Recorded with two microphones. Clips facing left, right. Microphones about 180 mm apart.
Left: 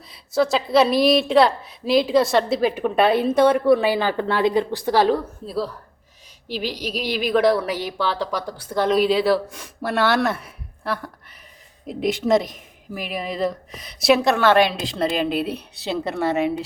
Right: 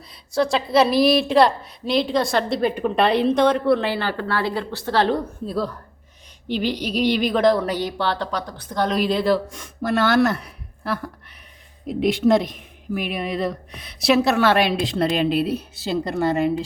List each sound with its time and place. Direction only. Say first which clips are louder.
0.0 s a woman's voice: left 1 dB; centre (ahead or behind)